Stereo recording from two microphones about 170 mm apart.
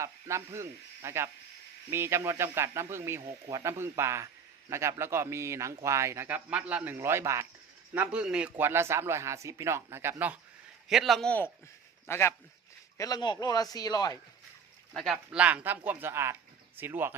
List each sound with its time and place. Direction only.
0.0 s a man's voice: 15° right (ahead or behind)
10.8 s a man's voice: centre (ahead or behind); by 14.2 s 25° left (ahead or behind)
14.9 s a man's voice: centre (ahead or behind)